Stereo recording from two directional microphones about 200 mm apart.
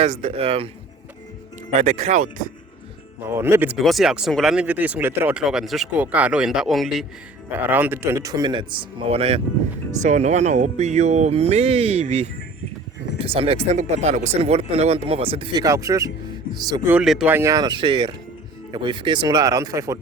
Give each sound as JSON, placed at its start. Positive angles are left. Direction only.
{"t": 0.0, "sound": "speech", "side_deg": -30}
{"t": 1.8, "sound": "speech", "side_deg": -35}
{"t": 3.2, "sound": "speech", "side_deg": -10}
{"t": 3.8, "sound": "speech", "side_deg": 0}
{"t": 16.9, "sound": "speech", "side_deg": 0}